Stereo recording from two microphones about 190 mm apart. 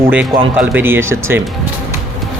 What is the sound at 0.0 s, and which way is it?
A man's voice, 10° right (ahead or behind).